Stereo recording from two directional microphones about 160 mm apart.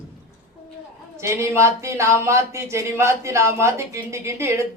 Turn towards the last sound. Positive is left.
turn(degrees=-20)  # may be behind; listen again after turning